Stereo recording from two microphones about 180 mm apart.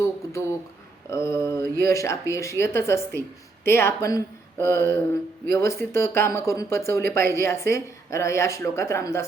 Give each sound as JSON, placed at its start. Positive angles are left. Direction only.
{"t": 1.1, "sound": "mantra", "side_deg": 15}
{"t": 1.8, "sound": "speech", "side_deg": 15}